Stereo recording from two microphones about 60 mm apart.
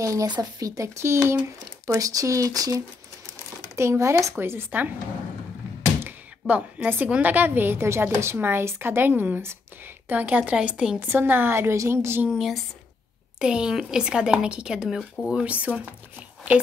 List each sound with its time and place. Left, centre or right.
0.0 s speech: right
0.8 s a woman's voice: right
1.9 s speech: right
3.7 s speech: right
4.4 s a woman's voice: right
6.0 s a sound: right
7.1 s a woman's voice: right
11.0 s a woman's voice: right
11.7 s a woman's voice: right
12.3 s speech: centre
13.4 s speech: centre
15.0 s speech: centre
15.4 s a woman's voice: right